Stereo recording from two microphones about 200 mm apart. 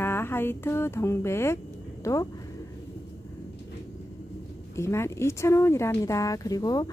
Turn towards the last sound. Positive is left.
turn(degrees=20)  # may be behind; listen again after turning